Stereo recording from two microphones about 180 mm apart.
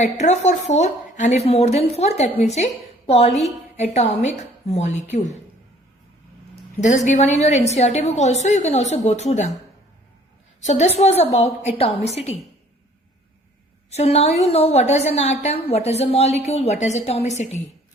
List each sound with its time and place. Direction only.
0.0 s a woman's voice: 40° left (ahead or behind)
6.7 s a woman's voice: 40° left (ahead or behind)
10.7 s a woman's voice: 35° left (ahead or behind)
13.9 s a woman's voice: 35° left (ahead or behind)